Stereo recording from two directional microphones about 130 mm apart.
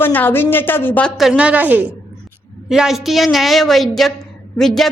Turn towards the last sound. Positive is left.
turn(degrees=0)  # may be behind; listen again after turning